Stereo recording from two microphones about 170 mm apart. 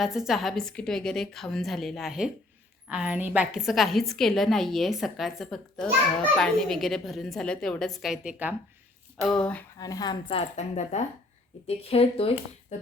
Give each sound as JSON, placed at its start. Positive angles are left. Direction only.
{"t": 0.0, "sound": "a woman's voice", "side_deg": 0}
{"t": 9.2, "sound": "speech", "side_deg": 5}
{"t": 9.7, "sound": "a woman's voice", "side_deg": 20}
{"t": 10.6, "sound": "speech", "side_deg": 40}